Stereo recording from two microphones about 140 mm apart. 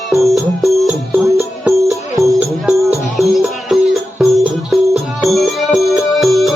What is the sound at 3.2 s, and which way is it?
Music, centre (ahead or behind).